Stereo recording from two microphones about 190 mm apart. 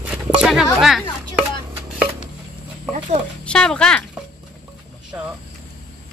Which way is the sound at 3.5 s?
5° left (ahead or behind).